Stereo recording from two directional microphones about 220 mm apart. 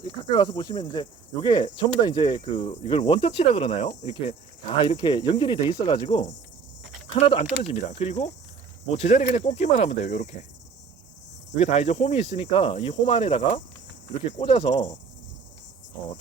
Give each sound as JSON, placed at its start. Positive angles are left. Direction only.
{"t": 0.0, "sound": "speech", "side_deg": 20}
{"t": 7.1, "sound": "speech", "side_deg": 30}
{"t": 11.5, "sound": "speech", "side_deg": 30}